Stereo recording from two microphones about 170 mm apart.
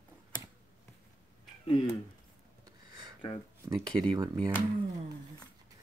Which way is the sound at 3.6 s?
25° right (ahead or behind).